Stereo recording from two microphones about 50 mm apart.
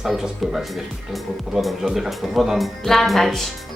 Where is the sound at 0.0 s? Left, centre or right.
Centre.